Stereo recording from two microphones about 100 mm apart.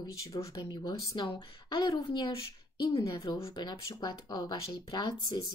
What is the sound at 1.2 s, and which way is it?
Speech, 50° left (ahead or behind).